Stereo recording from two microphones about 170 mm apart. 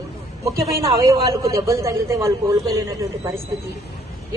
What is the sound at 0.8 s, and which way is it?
A man's voice, 20° right (ahead or behind).